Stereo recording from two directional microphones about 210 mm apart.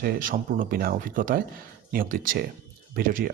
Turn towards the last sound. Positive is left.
turn(degrees=-40)  # may be behind; listen again after turning